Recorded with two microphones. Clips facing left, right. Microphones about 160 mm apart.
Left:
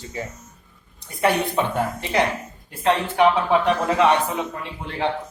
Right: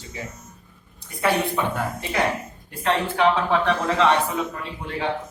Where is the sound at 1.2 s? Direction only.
25° left (ahead or behind).